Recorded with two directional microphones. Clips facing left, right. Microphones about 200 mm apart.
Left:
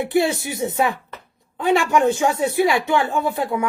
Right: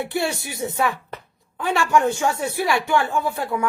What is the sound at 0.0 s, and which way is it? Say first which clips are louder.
Speech: left 5 dB; 20° left (ahead or behind).